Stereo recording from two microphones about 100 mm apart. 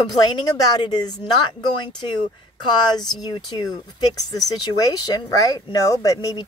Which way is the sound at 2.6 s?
45° left (ahead or behind).